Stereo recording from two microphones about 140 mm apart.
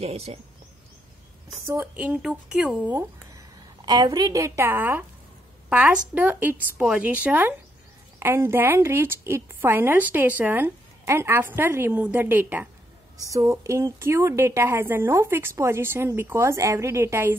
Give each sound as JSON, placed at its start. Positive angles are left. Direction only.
{"t": 0.0, "sound": "speech", "side_deg": -45}
{"t": 1.7, "sound": "a woman's voice", "side_deg": -10}
{"t": 3.8, "sound": "a woman's voice", "side_deg": -30}
{"t": 13.3, "sound": "a woman's voice", "side_deg": -25}